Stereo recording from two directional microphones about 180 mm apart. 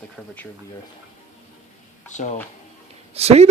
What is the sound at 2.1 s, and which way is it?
Speech, 40° left (ahead or behind).